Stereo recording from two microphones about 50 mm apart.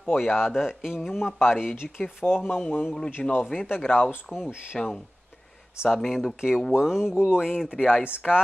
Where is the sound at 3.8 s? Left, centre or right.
Left.